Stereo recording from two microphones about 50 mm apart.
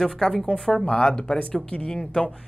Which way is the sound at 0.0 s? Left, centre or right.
Centre.